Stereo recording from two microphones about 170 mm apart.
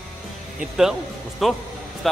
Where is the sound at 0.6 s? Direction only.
5° right (ahead or behind).